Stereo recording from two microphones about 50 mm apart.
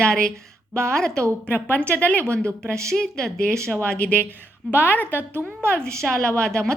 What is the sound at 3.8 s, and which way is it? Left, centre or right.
Speech, left.